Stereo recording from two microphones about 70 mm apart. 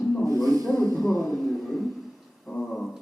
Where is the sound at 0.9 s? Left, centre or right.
Centre.